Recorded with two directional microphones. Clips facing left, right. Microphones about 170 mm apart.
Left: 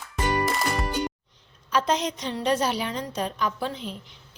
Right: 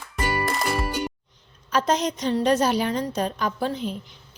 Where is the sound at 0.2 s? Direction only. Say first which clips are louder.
Even; 5° right (ahead or behind).